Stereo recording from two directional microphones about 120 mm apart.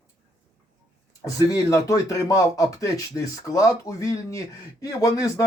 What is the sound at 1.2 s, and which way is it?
Speech, 30° left (ahead or behind).